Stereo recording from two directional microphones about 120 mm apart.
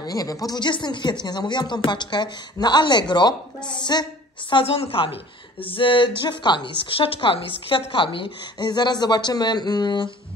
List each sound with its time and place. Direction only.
0.0 s a woman's voice: 30° left (ahead or behind)
4.5 s a woman's voice: 50° left (ahead or behind)